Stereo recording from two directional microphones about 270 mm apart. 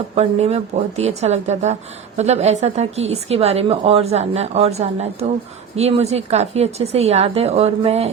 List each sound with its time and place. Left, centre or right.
0.2 s a woman's voice: right